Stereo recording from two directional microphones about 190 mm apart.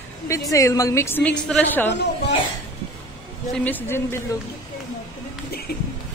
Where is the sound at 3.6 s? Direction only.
10° left (ahead or behind).